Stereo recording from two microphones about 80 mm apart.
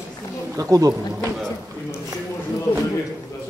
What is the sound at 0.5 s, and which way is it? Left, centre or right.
Speech, right.